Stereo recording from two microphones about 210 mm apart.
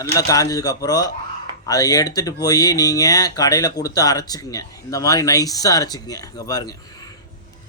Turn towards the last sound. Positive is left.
turn(degrees=15)  # may be behind; listen again after turning